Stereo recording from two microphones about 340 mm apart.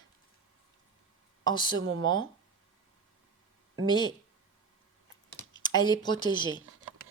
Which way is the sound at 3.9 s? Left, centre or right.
Centre.